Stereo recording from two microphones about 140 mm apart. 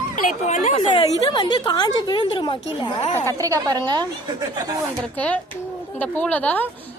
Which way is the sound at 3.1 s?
20° left (ahead or behind).